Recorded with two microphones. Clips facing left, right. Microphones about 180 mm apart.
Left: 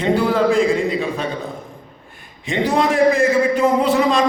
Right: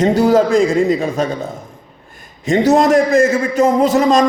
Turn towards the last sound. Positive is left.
turn(degrees=-45)  # may be behind; listen again after turning